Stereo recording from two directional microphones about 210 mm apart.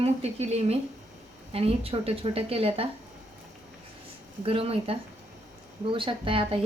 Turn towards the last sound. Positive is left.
turn(degrees=-25)  # may be behind; listen again after turning